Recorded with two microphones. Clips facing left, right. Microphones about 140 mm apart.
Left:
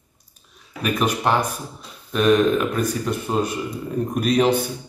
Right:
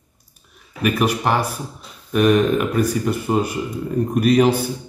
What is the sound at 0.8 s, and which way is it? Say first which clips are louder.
Speech: right 2 dB; 10° right (ahead or behind).